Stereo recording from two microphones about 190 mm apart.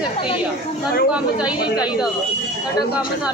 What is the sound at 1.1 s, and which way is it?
Speech, 5° right (ahead or behind).